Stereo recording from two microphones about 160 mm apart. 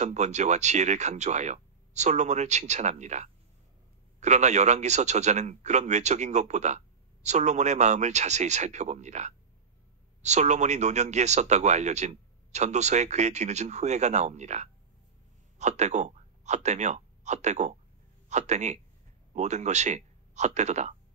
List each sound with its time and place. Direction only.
0.0 s speech: 45° right (ahead or behind)